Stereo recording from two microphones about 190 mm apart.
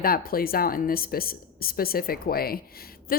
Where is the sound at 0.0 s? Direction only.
50° left (ahead or behind).